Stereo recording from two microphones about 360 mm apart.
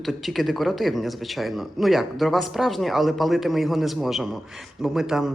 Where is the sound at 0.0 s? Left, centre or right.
Centre.